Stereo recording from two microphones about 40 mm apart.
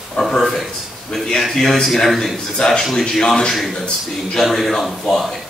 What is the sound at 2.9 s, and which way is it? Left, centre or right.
Speech, centre.